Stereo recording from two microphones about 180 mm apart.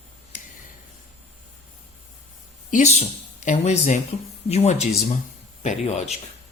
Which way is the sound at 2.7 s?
40° left (ahead or behind).